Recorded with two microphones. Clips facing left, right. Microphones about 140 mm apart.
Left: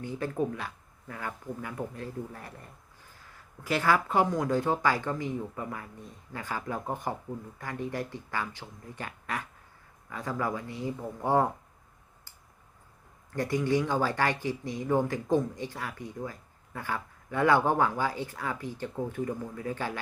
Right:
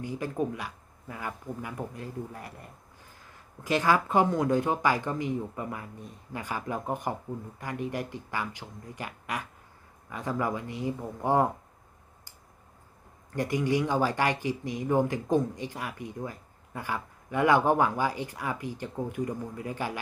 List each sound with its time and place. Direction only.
0.0 s speech: 10° right (ahead or behind)
3.6 s speech: 15° right (ahead or behind)
13.3 s speech: 20° right (ahead or behind)